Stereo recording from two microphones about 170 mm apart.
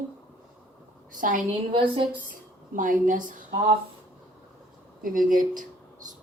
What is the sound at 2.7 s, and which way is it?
Speech, 50° right (ahead or behind).